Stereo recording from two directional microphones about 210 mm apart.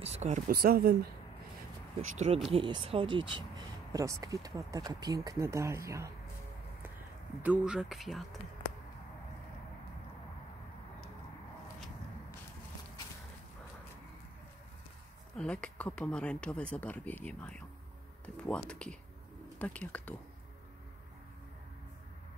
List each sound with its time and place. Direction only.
0.0 s speech: 30° right (ahead or behind)
2.0 s speech: 30° right (ahead or behind); by 6.1 s 15° right (ahead or behind)
7.4 s speech: 5° right (ahead or behind)
15.3 s speech: 5° left (ahead or behind)